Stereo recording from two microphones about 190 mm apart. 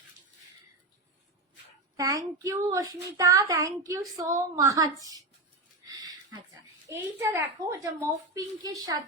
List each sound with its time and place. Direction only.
2.0 s a child's voice: 15° right (ahead or behind)
5.8 s a sound: 20° right (ahead or behind)
6.8 s a child's voice: 15° right (ahead or behind)